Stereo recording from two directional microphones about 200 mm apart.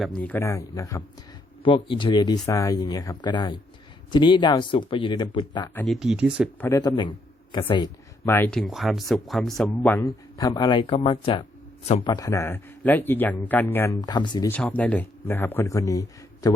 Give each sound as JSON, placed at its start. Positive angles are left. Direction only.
{"t": 0.2, "sound": "speech", "side_deg": 10}
{"t": 5.6, "sound": "speech", "side_deg": 5}
{"t": 6.6, "sound": "speech", "side_deg": 15}
{"t": 14.5, "sound": "speech", "side_deg": 10}